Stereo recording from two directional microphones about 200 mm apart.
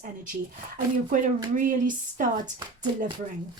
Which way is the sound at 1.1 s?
40° right (ahead or behind).